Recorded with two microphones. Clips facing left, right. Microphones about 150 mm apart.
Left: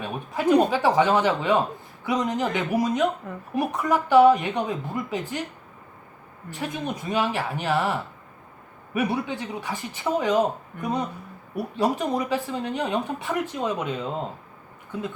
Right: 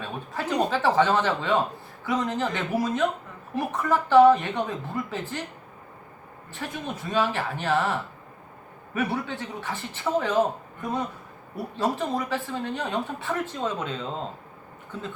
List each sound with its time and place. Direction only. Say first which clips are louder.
0.0 s speech: left 6 dB; 15° left (ahead or behind)
6.5 s speech: left 4 dB; 15° left (ahead or behind)